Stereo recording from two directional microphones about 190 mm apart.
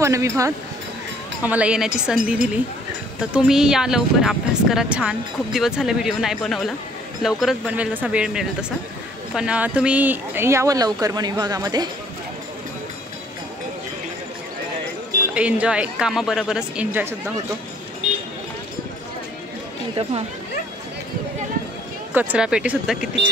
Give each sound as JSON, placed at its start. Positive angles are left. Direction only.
{"t": 0.0, "sound": "speech", "side_deg": -15}
{"t": 15.3, "sound": "speech", "side_deg": -5}
{"t": 22.1, "sound": "speech", "side_deg": -5}